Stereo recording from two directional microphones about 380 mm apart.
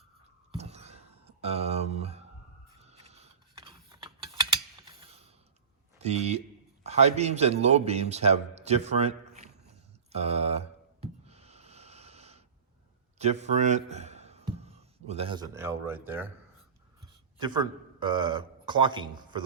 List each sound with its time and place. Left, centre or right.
0.5 s a sound: centre
2.8 s gears: centre
6.0 s a man's voice: centre
10.1 s a sound: centre
13.1 s a man's voice: centre
17.4 s a man's voice: centre